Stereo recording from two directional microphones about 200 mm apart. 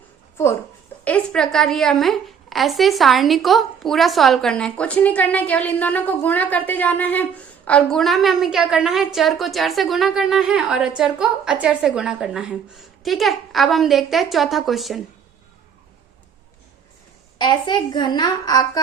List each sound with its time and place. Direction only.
1.0 s a woman's voice: 5° left (ahead or behind)
17.3 s a woman's voice: 20° left (ahead or behind)